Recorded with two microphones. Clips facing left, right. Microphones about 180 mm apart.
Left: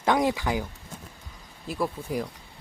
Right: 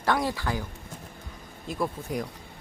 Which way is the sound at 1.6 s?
5° left (ahead or behind).